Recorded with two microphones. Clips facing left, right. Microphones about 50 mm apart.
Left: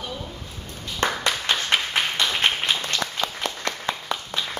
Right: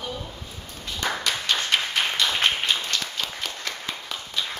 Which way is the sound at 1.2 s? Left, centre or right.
Centre.